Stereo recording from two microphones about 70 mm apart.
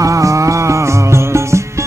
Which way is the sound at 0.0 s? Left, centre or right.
Right.